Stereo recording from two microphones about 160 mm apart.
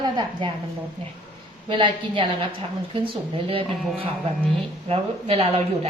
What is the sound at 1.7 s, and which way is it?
A woman's voice, 30° right (ahead or behind).